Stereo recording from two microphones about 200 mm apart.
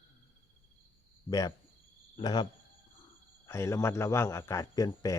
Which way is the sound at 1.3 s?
20° left (ahead or behind).